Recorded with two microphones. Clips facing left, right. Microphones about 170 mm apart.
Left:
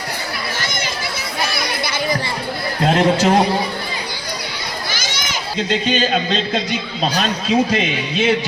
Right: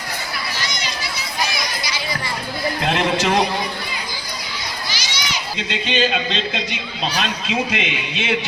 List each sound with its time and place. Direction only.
0.6 s a sound: 50° left (ahead or behind)
2.8 s speech: 40° left (ahead or behind)
4.9 s children playing: 50° left (ahead or behind)
7.0 s speech: 40° left (ahead or behind)